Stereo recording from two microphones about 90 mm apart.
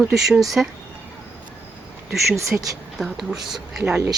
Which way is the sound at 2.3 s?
35° right (ahead or behind).